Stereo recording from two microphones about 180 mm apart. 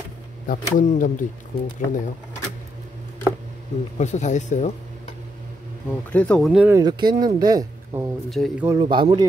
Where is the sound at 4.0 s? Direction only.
40° left (ahead or behind).